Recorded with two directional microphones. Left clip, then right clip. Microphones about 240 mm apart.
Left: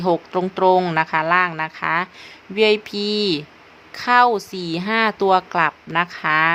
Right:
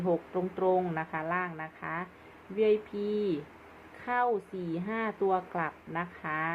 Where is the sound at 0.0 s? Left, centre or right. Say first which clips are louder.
Left 11 dB; left.